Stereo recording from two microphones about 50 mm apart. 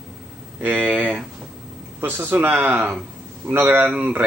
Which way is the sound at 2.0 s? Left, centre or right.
Right.